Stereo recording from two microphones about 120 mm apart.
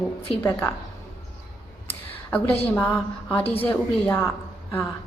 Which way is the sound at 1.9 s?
15° left (ahead or behind).